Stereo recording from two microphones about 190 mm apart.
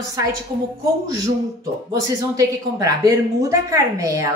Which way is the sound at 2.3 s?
20° right (ahead or behind).